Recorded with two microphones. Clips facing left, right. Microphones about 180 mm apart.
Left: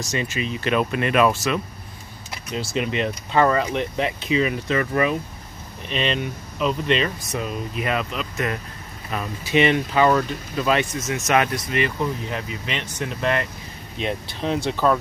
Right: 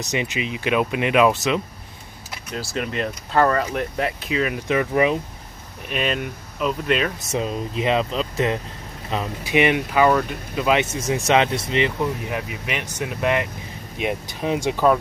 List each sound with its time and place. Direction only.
0.1 s speech: 15° right (ahead or behind)
2.5 s speech: centre (ahead or behind)
4.6 s speech: 15° right (ahead or behind)
7.2 s speech: 25° right (ahead or behind)
9.1 s speech: 20° right (ahead or behind)
11.0 s speech: 30° right (ahead or behind)
12.3 s speech: 10° right (ahead or behind)